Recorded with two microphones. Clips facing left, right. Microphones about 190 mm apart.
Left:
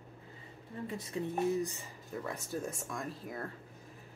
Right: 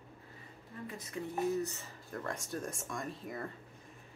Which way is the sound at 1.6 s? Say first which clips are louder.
Left 1 dB; 15° left (ahead or behind).